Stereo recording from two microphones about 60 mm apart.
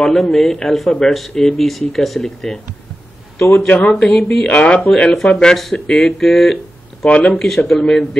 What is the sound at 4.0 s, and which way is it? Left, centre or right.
Speech, centre.